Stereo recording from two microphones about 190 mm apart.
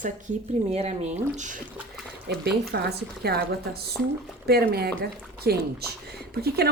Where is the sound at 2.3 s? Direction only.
60° right (ahead or behind).